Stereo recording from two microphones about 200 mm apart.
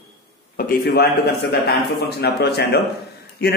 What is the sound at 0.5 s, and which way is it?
A man's voice, 45° left (ahead or behind).